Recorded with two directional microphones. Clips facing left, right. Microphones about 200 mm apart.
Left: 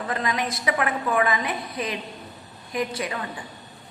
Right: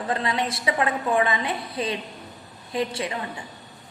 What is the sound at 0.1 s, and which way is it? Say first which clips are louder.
A woman's voice: right 2 dB; 30° right (ahead or behind).